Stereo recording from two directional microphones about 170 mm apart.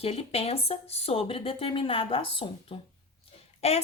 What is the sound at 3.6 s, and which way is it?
Speech, 40° left (ahead or behind).